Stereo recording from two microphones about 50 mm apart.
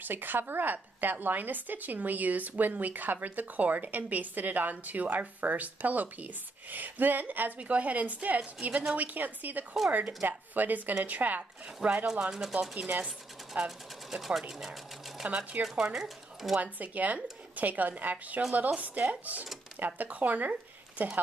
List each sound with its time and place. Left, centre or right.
0.0 s a woman's voice: right
12.3 s speech: centre
12.5 s speech: right
13.7 s speech: centre
15.2 s speech: right
15.6 s speech: centre
16.5 s speech: right